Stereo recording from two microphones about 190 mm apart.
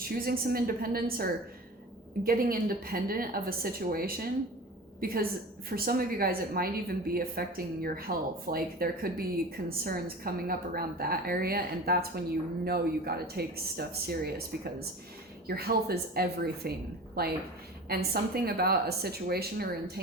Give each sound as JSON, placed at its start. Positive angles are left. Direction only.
{"t": 0.0, "sound": "a woman's voice", "side_deg": -50}